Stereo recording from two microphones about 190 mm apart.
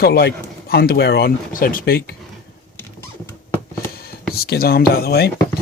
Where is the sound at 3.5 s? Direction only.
10° left (ahead or behind).